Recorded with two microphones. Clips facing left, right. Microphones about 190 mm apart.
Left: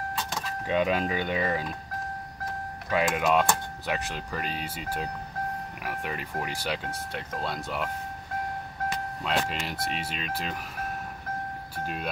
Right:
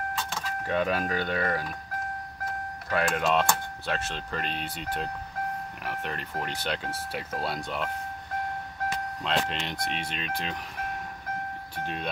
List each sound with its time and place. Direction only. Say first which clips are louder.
0.7 s speech: left 2 dB; 15° left (ahead or behind)
2.9 s speech: left 1 dB; 15° left (ahead or behind)
9.2 s speech: even; 5° left (ahead or behind)
11.7 s speech: even; 5° left (ahead or behind)